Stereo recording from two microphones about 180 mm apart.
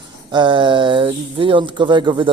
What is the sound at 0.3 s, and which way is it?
Speech, 25° right (ahead or behind).